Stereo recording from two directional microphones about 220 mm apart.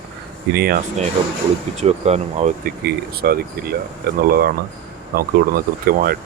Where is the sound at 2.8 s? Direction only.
45° right (ahead or behind).